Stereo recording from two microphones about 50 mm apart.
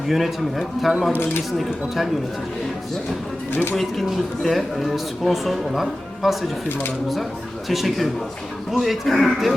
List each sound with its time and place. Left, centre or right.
0.1 s speech: centre
3.5 s speech: left
4.4 s speech: centre
6.7 s speech: left
7.7 s speech: centre